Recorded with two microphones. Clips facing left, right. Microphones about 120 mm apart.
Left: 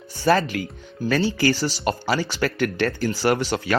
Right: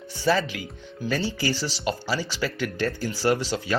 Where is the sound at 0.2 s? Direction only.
55° left (ahead or behind).